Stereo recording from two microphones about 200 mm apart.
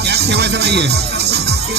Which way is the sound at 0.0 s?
55° right (ahead or behind).